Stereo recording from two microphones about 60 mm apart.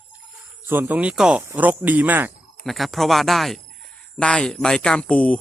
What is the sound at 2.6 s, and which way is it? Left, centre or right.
Speech, centre.